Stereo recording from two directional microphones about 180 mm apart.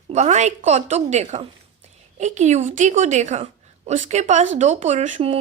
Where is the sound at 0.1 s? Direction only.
40° right (ahead or behind).